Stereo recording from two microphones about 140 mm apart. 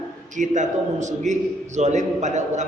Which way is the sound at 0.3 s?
60° right (ahead or behind).